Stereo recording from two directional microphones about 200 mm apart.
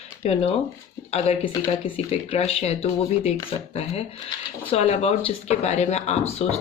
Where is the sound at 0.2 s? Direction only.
30° left (ahead or behind).